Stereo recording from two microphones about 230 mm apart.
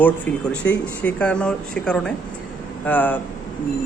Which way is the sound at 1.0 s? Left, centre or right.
Centre.